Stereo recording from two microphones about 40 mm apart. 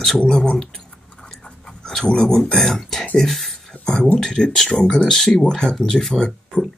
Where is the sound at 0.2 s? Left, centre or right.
Left.